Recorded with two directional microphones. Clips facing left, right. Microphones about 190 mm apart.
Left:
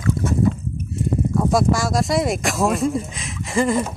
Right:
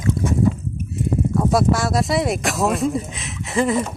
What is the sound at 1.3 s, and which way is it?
Speech, centre (ahead or behind).